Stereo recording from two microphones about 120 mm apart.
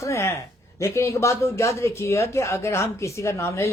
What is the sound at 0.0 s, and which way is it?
A man's voice, 25° left (ahead or behind).